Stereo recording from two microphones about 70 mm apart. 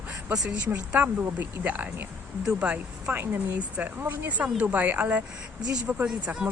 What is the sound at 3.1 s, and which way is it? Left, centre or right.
Speech, right.